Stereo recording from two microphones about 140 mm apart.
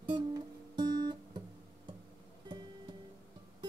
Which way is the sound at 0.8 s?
30° right (ahead or behind).